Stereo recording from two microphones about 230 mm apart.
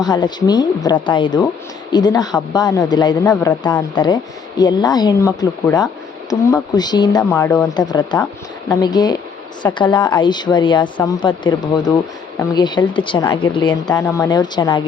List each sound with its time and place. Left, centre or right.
0.0 s speech: centre